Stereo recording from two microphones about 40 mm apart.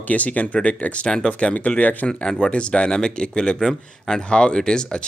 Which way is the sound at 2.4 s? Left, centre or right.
Left.